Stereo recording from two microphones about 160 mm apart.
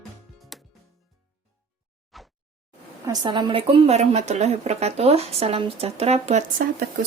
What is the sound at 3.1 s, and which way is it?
Speech, 30° right (ahead or behind).